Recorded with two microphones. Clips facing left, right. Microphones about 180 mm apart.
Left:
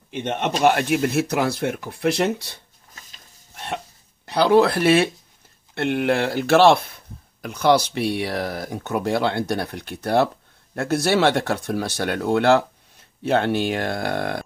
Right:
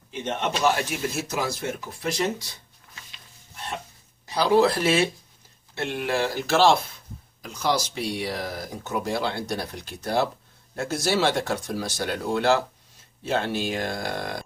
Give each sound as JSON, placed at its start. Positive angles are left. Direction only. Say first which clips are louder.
{"t": 0.1, "sound": "speech", "louder": "left 3 dB", "side_deg": 65}
{"t": 2.9, "sound": "a sound", "louder": "even", "side_deg": 40}
{"t": 4.3, "sound": "speech", "louder": "left 4 dB", "side_deg": 65}